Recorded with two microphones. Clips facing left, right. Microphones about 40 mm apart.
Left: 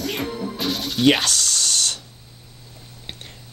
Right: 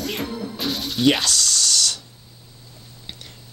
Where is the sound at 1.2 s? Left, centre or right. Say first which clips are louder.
Right 1 dB; left.